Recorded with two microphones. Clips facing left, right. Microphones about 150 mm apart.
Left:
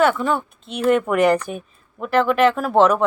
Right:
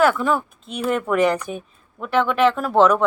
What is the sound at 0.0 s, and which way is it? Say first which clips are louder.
Speech: even; centre (ahead or behind).